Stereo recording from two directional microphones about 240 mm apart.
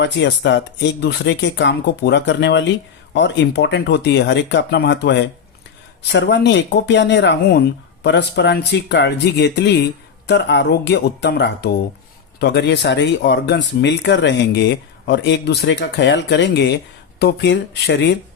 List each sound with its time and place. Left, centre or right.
0.0 s speech: left